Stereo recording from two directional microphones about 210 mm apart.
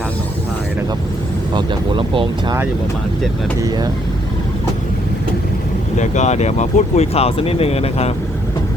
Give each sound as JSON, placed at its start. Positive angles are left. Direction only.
{"t": 1.5, "sound": "speech", "side_deg": -20}
{"t": 3.6, "sound": "speech", "side_deg": -20}
{"t": 6.0, "sound": "speech", "side_deg": 35}